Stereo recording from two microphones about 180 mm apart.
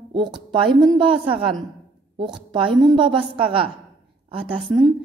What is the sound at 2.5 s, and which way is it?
A woman's voice, 25° right (ahead or behind).